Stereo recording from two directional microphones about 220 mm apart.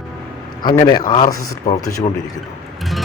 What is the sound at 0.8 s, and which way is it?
Speech, 20° left (ahead or behind).